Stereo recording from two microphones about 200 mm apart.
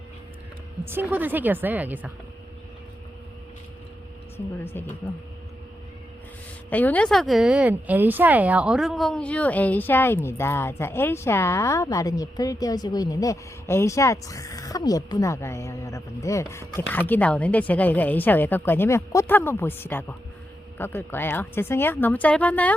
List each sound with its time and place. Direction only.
0.9 s speech: 10° right (ahead or behind)
6.7 s speech: 10° left (ahead or behind)